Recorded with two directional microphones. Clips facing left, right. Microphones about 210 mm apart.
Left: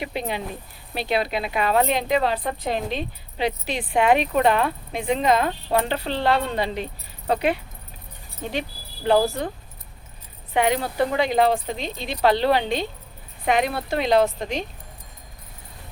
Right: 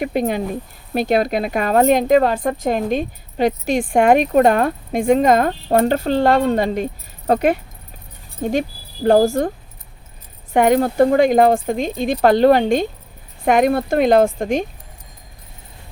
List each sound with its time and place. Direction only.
0.0 s speech: 45° right (ahead or behind)
10.5 s speech: 45° right (ahead or behind)